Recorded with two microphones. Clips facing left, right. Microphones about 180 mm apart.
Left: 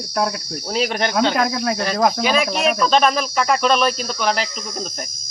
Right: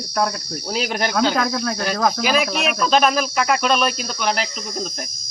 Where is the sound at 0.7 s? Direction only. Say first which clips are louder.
Left 2 dB; centre (ahead or behind).